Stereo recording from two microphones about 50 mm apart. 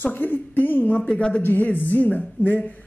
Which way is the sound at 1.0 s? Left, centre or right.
Left.